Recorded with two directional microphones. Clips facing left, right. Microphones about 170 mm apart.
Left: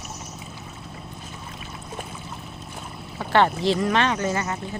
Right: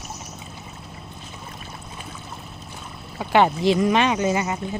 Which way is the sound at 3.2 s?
10° right (ahead or behind).